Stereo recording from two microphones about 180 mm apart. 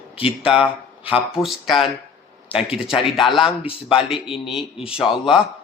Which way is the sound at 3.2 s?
Centre (ahead or behind).